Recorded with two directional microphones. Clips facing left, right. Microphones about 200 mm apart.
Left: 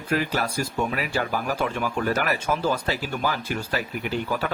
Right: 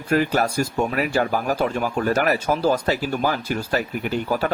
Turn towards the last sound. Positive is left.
turn(degrees=-45)  # may be behind; listen again after turning